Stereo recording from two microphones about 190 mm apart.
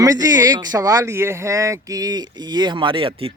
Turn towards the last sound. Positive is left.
turn(degrees=-30)  # may be behind; listen again after turning